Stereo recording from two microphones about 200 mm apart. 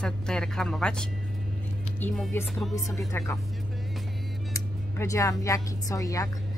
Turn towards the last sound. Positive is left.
turn(degrees=15)  # may be behind; listen again after turning